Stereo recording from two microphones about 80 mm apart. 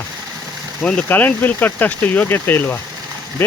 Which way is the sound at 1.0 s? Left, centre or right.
Left.